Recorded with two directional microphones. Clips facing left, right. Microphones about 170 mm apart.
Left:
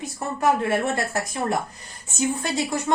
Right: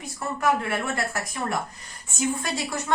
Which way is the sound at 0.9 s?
25° left (ahead or behind).